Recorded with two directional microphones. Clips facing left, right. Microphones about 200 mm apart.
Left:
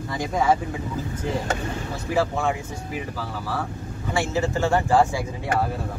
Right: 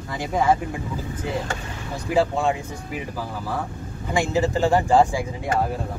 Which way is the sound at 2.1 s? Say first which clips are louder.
Right 3 dB; 15° right (ahead or behind).